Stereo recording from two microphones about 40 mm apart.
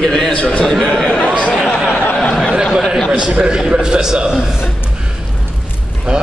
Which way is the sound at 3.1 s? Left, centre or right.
Right.